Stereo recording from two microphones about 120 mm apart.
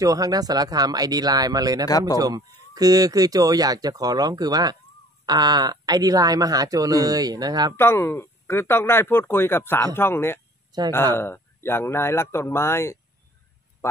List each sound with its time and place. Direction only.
0.0 s speech: 30° right (ahead or behind)
1.9 s speech: 30° left (ahead or behind)
2.1 s speech: 30° right (ahead or behind)
7.7 s speech: 20° left (ahead or behind)
10.7 s speech: 35° right (ahead or behind)
11.1 s speech: 20° left (ahead or behind)